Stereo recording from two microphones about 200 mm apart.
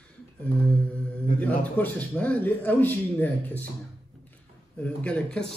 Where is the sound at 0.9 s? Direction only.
5° left (ahead or behind).